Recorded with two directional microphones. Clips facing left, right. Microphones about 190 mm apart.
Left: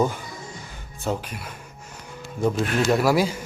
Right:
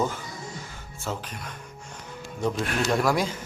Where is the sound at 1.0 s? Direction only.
15° left (ahead or behind).